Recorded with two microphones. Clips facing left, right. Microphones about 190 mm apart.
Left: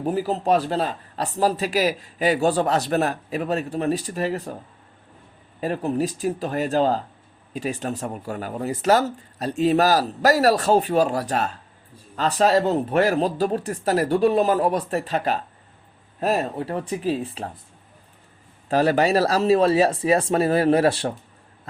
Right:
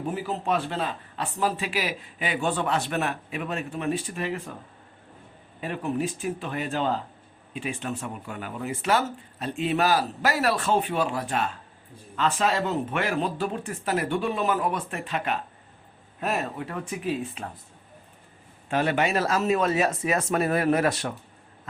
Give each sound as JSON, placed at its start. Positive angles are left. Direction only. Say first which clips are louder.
{"t": 0.0, "sound": "speech", "louder": "left 6 dB", "side_deg": 40}
{"t": 5.5, "sound": "speech", "louder": "left 5 dB", "side_deg": 40}
{"t": 18.7, "sound": "speech", "louder": "left 6 dB", "side_deg": 35}